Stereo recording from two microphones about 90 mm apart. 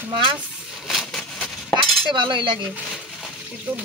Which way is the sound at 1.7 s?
65° right (ahead or behind).